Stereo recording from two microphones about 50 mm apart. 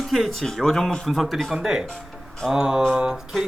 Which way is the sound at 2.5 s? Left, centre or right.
Centre.